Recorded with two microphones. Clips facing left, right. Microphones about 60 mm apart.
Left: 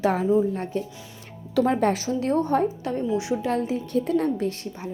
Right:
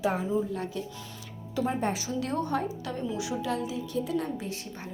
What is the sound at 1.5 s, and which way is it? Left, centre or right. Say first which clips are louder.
Speech: left 8 dB; left.